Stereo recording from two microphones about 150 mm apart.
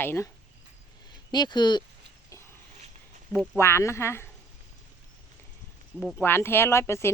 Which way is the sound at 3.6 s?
15° left (ahead or behind).